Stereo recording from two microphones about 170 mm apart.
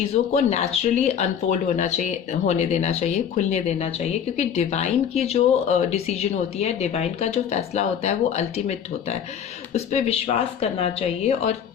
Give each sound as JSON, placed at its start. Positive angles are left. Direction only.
{"t": 0.1, "sound": "speech", "side_deg": 40}